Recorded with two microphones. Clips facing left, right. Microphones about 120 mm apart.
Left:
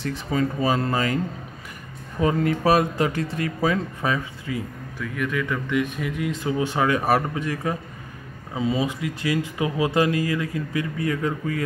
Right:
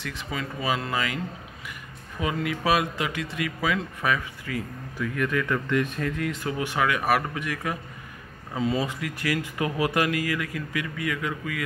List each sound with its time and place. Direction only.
0.0 s speech: 40° left (ahead or behind)
4.9 s speech: centre (ahead or behind); by 7.8 s 30° left (ahead or behind)
8.5 s speech: 20° left (ahead or behind); by 11.6 s 35° left (ahead or behind)